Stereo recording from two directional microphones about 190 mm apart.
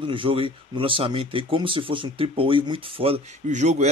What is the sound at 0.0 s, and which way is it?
Speech, 25° right (ahead or behind).